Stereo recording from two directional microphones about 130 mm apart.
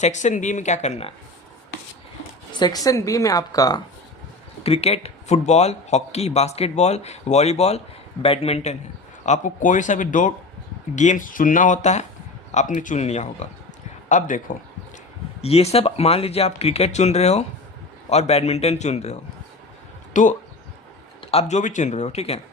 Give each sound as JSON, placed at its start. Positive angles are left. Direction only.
{"t": 0.0, "sound": "speech", "side_deg": 65}
{"t": 2.5, "sound": "a woman's voice", "side_deg": 35}
{"t": 4.6, "sound": "speech", "side_deg": 50}
{"t": 9.2, "sound": "speech", "side_deg": 70}
{"t": 10.9, "sound": "speech", "side_deg": 70}
{"t": 14.1, "sound": "a man's voice", "side_deg": 80}
{"t": 15.4, "sound": "speech", "side_deg": 55}
{"t": 20.1, "sound": "speech", "side_deg": 70}
{"t": 21.2, "sound": "speech", "side_deg": 55}